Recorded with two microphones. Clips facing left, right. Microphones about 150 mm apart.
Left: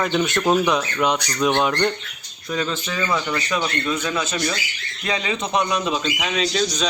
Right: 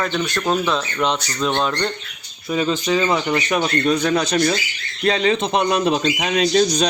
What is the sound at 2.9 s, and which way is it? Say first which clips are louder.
Speech: right 5 dB; 25° right (ahead or behind).